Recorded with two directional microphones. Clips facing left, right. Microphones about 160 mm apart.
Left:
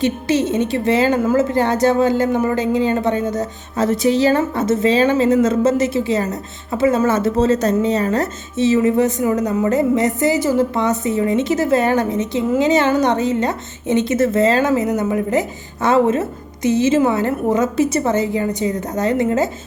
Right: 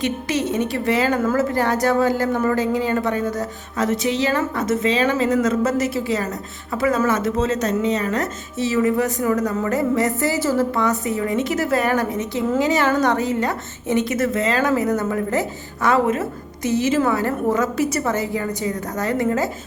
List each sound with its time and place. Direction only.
0.0 s speech: 25° left (ahead or behind)
3.8 s speech: 35° left (ahead or behind)
14.7 s speech: 20° left (ahead or behind)